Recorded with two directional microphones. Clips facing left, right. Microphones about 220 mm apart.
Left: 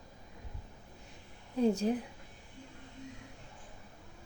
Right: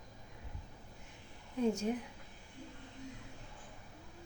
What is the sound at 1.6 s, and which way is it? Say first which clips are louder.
Speech: left 4 dB; 35° left (ahead or behind).